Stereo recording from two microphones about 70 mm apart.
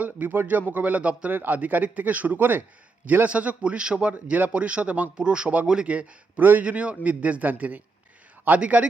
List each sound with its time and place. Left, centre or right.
0.0 s a man's voice: right